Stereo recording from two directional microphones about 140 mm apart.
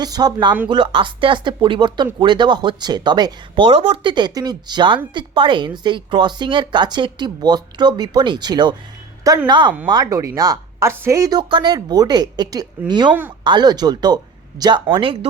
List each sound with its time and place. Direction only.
0.0 s speech: 30° right (ahead or behind)